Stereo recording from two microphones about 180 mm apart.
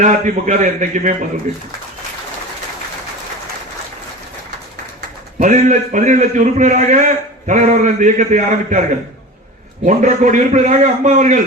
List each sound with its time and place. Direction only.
0.0 s a man's voice: 45° right (ahead or behind)
5.4 s a man's voice: 45° right (ahead or behind)
9.8 s a man's voice: 45° right (ahead or behind)